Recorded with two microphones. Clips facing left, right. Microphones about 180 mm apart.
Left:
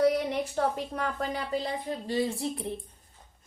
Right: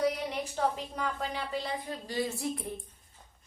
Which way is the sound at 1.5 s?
25° left (ahead or behind).